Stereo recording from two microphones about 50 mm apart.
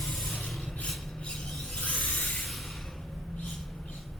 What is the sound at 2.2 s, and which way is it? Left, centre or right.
Spray, centre.